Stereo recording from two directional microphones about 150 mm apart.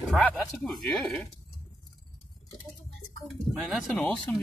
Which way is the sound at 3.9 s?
10° left (ahead or behind).